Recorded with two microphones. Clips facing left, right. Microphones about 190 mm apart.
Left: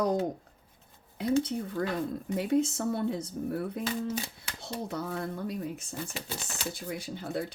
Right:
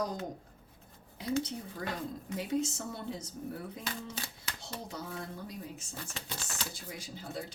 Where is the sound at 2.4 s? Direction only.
55° left (ahead or behind).